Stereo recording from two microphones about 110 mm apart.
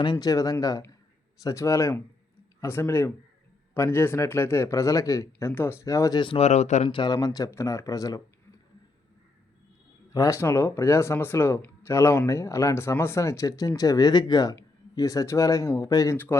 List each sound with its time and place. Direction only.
0.0 s speech: 40° left (ahead or behind)
6.1 s speech: 50° left (ahead or behind)
6.4 s speech: 85° left
6.8 s speech: 45° left (ahead or behind)
10.1 s speech: 30° left (ahead or behind)
16.1 s speech: 20° left (ahead or behind)